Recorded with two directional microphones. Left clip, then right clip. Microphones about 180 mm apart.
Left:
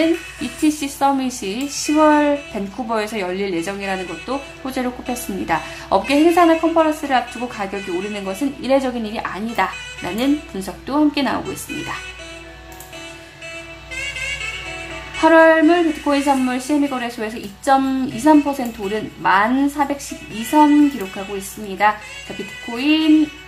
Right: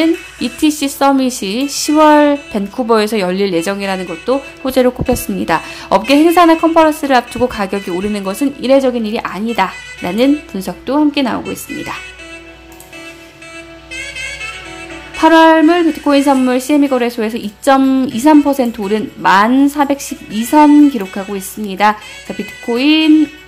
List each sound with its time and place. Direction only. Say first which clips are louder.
0.0 s speech: right 4 dB; 35° right (ahead or behind)
15.1 s speech: right 4 dB; 40° right (ahead or behind)